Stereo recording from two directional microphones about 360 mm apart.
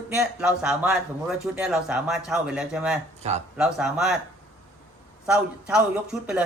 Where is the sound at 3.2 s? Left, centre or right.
Centre.